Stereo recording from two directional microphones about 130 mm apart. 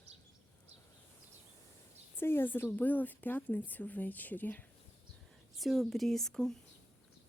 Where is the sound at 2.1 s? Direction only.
15° left (ahead or behind).